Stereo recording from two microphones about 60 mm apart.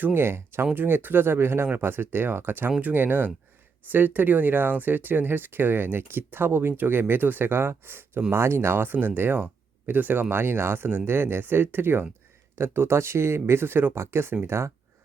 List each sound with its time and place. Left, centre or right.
0.0 s speech: right